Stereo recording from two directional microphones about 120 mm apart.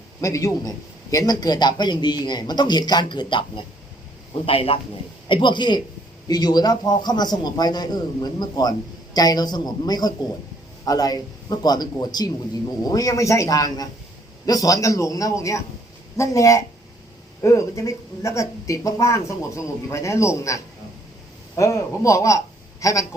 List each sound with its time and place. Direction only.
0.2 s a woman's voice: 25° left (ahead or behind); by 4.8 s 50° left (ahead or behind)
5.3 s a man's voice: 40° left (ahead or behind)